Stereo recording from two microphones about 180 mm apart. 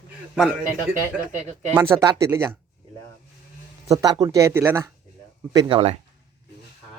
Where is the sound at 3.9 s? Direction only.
20° right (ahead or behind).